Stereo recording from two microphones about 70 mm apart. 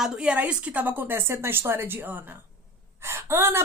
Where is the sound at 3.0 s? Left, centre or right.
Right.